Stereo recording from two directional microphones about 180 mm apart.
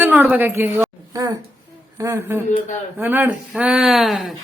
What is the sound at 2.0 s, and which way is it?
A man's voice, 15° right (ahead or behind).